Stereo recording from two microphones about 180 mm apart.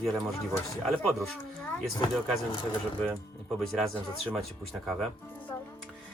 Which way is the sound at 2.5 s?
30° left (ahead or behind).